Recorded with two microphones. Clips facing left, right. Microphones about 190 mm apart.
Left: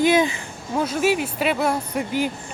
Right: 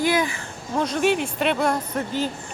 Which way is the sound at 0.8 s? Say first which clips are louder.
Even; 5° left (ahead or behind).